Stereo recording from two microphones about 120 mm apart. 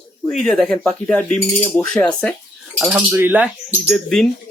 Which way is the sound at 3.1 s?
15° right (ahead or behind).